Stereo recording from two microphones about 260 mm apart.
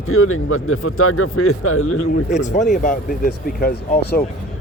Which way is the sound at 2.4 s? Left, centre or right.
Left.